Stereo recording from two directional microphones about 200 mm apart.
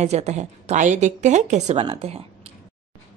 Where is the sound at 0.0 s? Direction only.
35° right (ahead or behind).